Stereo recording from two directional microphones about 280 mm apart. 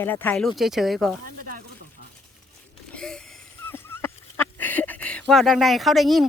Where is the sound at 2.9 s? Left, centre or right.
Centre.